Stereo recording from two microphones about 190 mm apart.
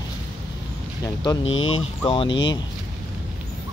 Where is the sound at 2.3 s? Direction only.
75° left (ahead or behind).